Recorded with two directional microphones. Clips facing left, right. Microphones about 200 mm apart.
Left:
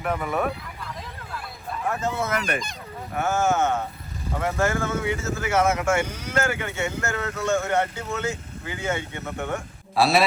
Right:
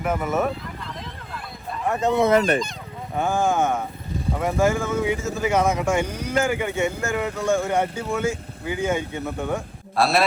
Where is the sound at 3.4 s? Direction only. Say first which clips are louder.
Even; 15° right (ahead or behind).